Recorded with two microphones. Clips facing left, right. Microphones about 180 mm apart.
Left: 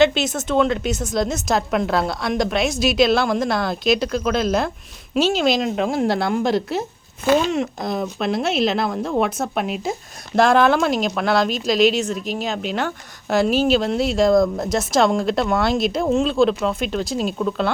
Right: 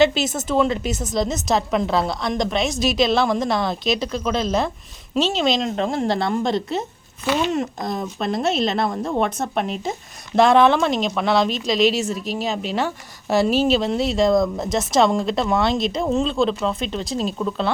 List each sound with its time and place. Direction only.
0.0 s speech: centre (ahead or behind)